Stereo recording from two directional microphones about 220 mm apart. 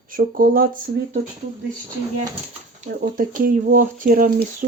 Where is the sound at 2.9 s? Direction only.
40° right (ahead or behind).